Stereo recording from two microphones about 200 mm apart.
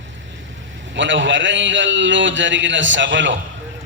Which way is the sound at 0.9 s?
65° right (ahead or behind).